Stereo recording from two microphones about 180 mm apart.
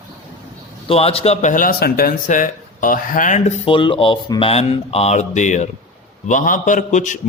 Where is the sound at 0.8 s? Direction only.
30° left (ahead or behind).